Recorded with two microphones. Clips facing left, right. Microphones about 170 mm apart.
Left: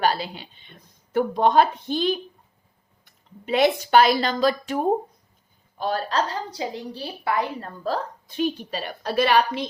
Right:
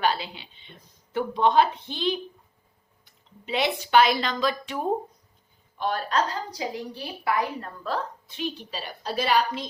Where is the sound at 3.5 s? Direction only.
45° left (ahead or behind).